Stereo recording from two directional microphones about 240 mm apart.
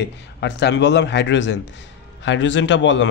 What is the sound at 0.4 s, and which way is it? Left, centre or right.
A man's voice, left.